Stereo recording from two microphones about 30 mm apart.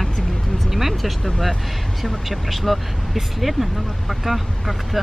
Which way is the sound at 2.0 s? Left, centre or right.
Centre.